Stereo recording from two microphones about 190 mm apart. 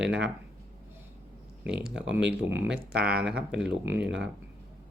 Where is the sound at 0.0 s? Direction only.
65° right (ahead or behind).